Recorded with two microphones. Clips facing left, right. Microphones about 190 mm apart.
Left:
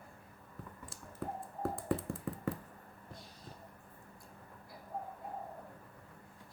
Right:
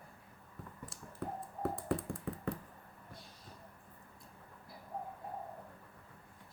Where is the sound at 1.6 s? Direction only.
Centre (ahead or behind).